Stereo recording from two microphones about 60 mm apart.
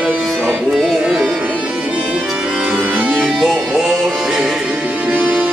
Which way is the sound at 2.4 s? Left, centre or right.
Centre.